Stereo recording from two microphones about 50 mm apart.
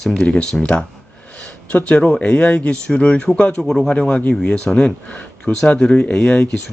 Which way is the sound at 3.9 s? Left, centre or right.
Centre.